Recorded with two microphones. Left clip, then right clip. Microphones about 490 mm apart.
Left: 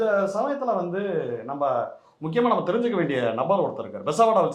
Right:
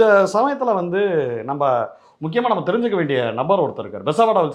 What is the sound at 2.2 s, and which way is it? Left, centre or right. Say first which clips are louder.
Speech: right 3 dB; right.